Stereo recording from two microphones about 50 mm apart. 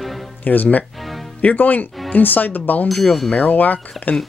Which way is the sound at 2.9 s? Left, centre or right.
Centre.